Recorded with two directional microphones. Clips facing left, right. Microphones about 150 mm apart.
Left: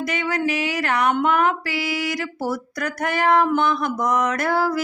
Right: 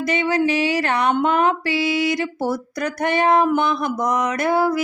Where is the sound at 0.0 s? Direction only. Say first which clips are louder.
Right 4 dB; 25° right (ahead or behind).